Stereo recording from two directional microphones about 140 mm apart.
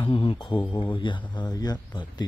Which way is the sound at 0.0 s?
40° left (ahead or behind).